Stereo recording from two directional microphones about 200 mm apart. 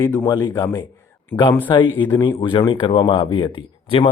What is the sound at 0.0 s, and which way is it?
Speech, 15° left (ahead or behind).